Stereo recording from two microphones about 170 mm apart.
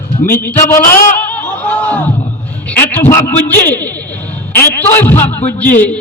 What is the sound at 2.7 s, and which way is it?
A man's voice, 10° left (ahead or behind).